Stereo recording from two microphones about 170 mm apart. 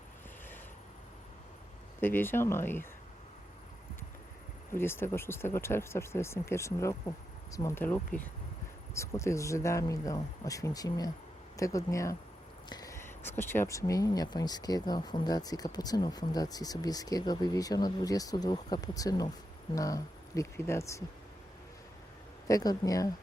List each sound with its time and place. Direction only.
2.0 s speech: 15° left (ahead or behind)
4.7 s speech: 15° left (ahead or behind)
22.4 s speech: 20° left (ahead or behind)